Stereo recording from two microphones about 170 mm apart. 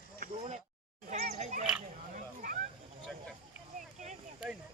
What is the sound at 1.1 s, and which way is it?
Speech, 40° right (ahead or behind).